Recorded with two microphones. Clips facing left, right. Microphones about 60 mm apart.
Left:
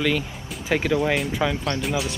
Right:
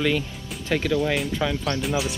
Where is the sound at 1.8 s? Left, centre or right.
Centre.